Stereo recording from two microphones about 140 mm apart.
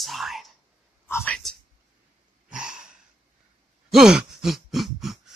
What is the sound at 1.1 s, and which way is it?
Whispering, 15° left (ahead or behind).